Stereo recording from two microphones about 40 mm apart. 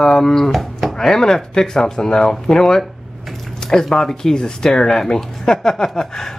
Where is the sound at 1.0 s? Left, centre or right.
Centre.